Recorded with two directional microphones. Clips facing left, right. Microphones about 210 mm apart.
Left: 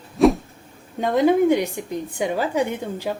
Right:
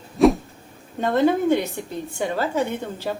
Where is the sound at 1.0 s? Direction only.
10° left (ahead or behind).